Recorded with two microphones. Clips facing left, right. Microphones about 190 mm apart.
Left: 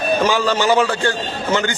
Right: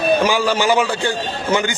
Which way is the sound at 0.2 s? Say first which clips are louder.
Even; 10° right (ahead or behind).